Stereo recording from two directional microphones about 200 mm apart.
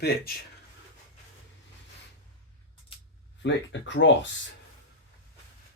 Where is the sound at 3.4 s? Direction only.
65° left (ahead or behind).